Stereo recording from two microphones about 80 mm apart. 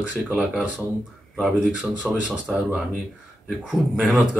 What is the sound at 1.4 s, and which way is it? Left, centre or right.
Speech, centre.